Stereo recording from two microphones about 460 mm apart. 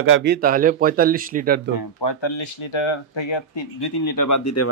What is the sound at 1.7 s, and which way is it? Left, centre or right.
Speech, left.